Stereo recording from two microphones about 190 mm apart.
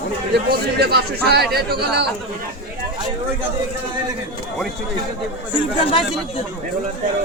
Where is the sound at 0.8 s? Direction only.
60° right (ahead or behind).